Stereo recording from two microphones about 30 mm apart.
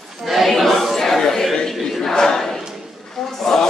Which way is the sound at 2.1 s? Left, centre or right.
Centre.